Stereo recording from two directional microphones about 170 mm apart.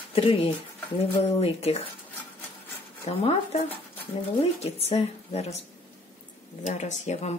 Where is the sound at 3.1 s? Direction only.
40° left (ahead or behind).